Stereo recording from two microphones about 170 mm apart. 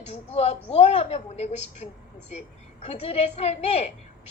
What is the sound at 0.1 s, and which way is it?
A woman's voice, 40° left (ahead or behind).